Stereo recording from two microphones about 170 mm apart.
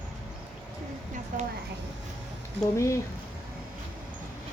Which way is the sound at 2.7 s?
15° left (ahead or behind).